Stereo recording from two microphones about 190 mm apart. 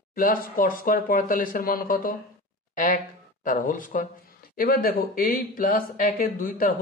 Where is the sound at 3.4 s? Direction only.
45° left (ahead or behind).